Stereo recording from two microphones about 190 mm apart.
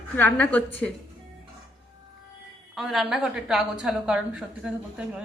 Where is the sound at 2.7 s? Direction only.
Centre (ahead or behind).